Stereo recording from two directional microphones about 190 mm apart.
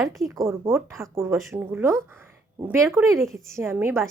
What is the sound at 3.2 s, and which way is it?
Speech, centre (ahead or behind).